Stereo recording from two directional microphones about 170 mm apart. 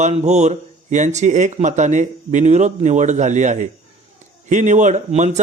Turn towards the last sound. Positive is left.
turn(degrees=-45)  # may be behind; listen again after turning